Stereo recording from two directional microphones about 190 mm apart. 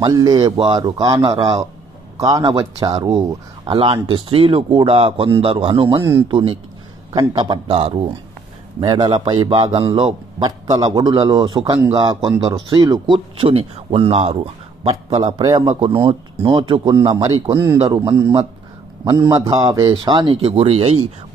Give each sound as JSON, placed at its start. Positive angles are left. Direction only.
{"t": 0.0, "sound": "a man's voice", "side_deg": -20}